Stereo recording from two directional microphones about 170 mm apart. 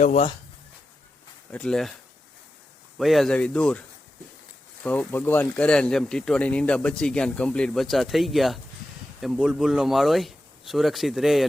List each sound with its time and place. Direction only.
0.0 s speech: 45° left (ahead or behind)
1.5 s speech: 5° left (ahead or behind)
3.0 s speech: centre (ahead or behind)
4.8 s speech: 10° left (ahead or behind)